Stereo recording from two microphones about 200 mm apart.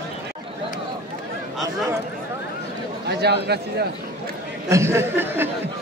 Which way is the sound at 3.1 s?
55° right (ahead or behind).